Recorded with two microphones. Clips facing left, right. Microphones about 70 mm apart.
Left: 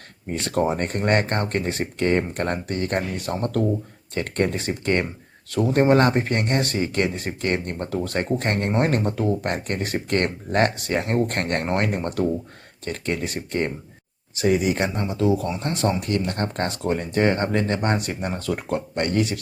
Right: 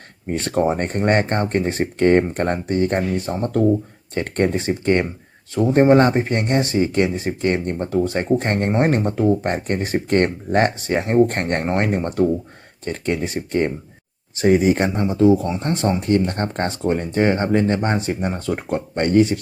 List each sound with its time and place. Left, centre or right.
0.3 s speech: right
0.8 s speech: right
14.3 s speech: right
16.9 s speech: centre